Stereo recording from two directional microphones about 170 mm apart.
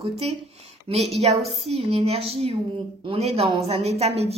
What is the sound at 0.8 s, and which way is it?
Speech, 35° right (ahead or behind).